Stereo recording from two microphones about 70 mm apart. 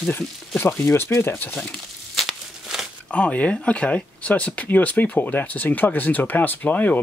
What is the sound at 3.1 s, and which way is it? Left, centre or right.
Speech, centre.